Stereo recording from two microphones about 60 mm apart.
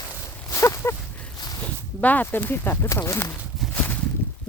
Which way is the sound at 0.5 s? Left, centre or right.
Left.